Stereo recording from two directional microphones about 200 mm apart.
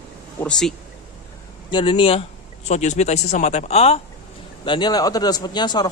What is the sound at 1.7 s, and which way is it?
A man's voice, 25° left (ahead or behind).